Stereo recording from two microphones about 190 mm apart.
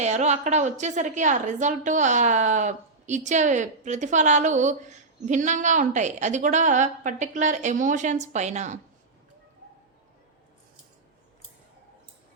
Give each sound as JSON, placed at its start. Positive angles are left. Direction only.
{"t": 0.0, "sound": "a woman's voice", "side_deg": -35}